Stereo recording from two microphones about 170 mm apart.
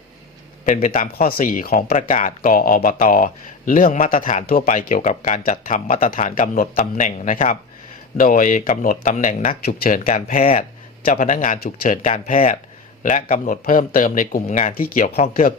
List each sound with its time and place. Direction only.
0.6 s speech: 50° left (ahead or behind)
9.6 s speech: 65° left (ahead or behind)
12.1 s speech: 35° left (ahead or behind)
13.0 s speech: 50° left (ahead or behind)